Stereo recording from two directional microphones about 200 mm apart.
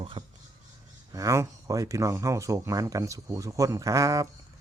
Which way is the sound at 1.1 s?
15° right (ahead or behind).